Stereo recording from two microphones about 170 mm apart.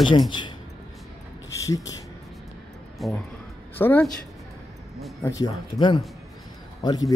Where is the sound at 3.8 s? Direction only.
10° left (ahead or behind).